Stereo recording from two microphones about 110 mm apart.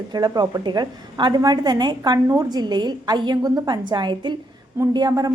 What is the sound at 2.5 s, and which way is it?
A woman's voice, 40° right (ahead or behind).